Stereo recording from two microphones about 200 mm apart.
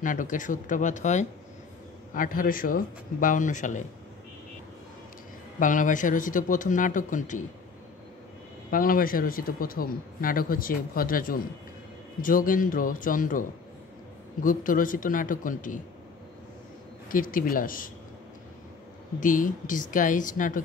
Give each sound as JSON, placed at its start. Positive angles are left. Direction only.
{"t": 0.0, "sound": "speech", "side_deg": 40}
{"t": 5.6, "sound": "speech", "side_deg": 40}
{"t": 8.6, "sound": "speech", "side_deg": 45}
{"t": 17.1, "sound": "speech", "side_deg": 45}
{"t": 19.1, "sound": "speech", "side_deg": 40}